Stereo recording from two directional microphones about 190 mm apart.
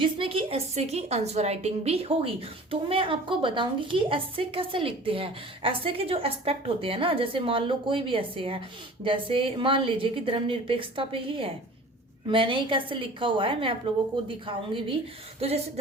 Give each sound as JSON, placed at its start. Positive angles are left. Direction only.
{"t": 0.0, "sound": "a woman's voice", "side_deg": -30}